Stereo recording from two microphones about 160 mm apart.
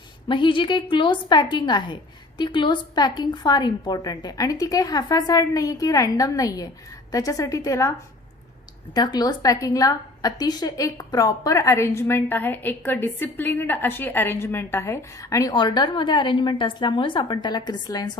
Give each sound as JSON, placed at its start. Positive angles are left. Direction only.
{"t": 0.3, "sound": "a woman's voice", "side_deg": 30}
{"t": 9.0, "sound": "a woman's voice", "side_deg": 25}